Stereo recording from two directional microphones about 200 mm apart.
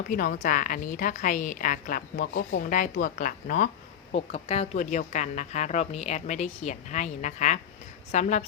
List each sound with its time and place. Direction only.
0.1 s a woman's voice: 45° left (ahead or behind)
4.1 s a woman's voice: 30° left (ahead or behind)